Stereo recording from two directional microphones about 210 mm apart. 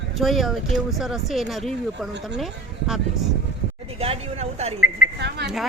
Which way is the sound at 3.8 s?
30° right (ahead or behind).